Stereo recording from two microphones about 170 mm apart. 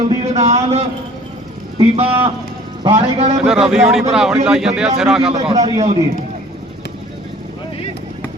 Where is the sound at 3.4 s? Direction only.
5° right (ahead or behind).